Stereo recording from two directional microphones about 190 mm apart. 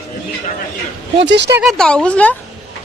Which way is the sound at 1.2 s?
65° right (ahead or behind).